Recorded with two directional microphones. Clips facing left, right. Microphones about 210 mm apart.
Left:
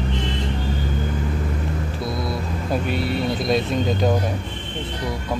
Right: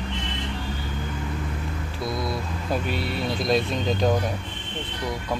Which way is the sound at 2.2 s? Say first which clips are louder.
Left 3 dB; centre (ahead or behind).